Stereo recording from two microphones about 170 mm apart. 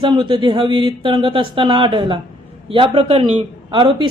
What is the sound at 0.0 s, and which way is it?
A man's voice, 30° right (ahead or behind).